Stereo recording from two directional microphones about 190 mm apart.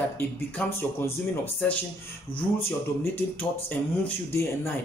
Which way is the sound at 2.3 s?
30° left (ahead or behind).